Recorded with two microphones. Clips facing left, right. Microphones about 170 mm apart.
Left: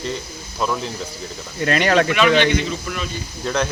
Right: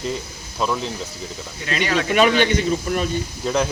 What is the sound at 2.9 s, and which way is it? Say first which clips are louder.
Speech: right 6 dB; 40° right (ahead or behind).